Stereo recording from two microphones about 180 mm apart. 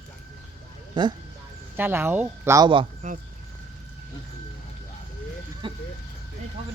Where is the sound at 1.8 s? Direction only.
10° right (ahead or behind).